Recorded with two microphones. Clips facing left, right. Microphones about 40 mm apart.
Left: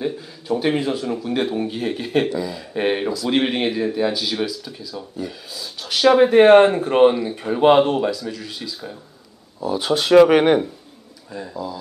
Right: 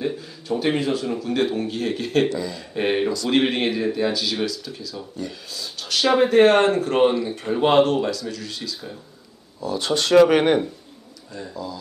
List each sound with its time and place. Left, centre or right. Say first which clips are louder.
0.5 s a man's voice: left 1 dB; centre